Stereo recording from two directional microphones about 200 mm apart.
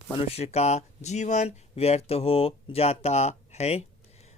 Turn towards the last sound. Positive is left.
turn(degrees=30)  # may be behind; listen again after turning